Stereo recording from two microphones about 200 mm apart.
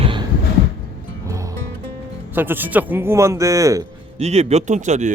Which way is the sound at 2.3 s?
10° right (ahead or behind).